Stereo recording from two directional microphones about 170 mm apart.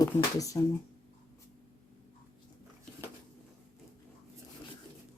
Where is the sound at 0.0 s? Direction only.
20° left (ahead or behind).